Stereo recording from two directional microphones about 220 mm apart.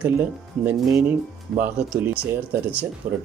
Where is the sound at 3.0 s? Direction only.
35° right (ahead or behind).